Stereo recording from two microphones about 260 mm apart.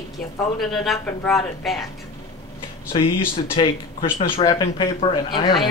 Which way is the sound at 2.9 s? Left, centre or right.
Centre.